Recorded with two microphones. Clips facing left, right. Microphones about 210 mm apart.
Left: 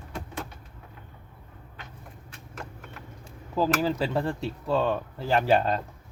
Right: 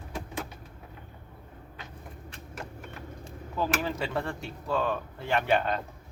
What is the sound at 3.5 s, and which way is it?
A man's voice, 30° left (ahead or behind).